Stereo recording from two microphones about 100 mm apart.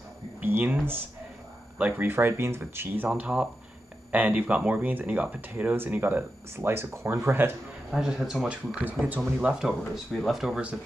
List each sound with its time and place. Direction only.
0.4 s speech: 20° right (ahead or behind)
1.8 s speech: 15° right (ahead or behind)
3.1 s speech: 10° right (ahead or behind)
7.9 s speech: 5° right (ahead or behind)